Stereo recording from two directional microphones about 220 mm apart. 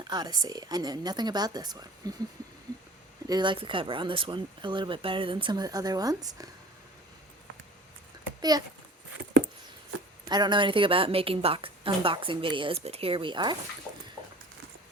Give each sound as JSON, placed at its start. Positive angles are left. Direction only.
{"t": 0.0, "sound": "speech", "side_deg": -20}
{"t": 3.2, "sound": "a woman's voice", "side_deg": -20}
{"t": 8.4, "sound": "a child's voice", "side_deg": -15}
{"t": 10.2, "sound": "a woman's voice", "side_deg": -20}